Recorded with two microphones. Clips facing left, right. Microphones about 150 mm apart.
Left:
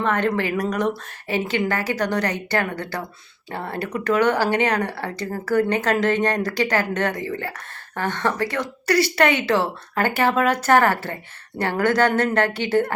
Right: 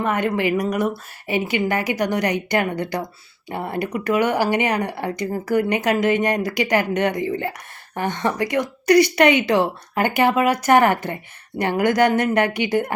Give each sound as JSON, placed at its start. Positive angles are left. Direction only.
{"t": 0.0, "sound": "speech", "side_deg": -10}